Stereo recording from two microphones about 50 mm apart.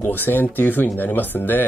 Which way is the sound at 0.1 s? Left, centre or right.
Left.